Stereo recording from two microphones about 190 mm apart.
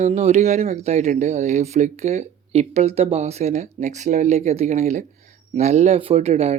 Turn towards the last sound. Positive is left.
turn(degrees=-35)  # may be behind; listen again after turning